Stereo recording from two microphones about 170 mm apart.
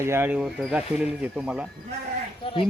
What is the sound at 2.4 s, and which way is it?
Speech, 30° left (ahead or behind).